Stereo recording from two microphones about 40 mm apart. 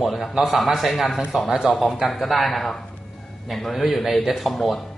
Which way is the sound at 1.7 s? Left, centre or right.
Centre.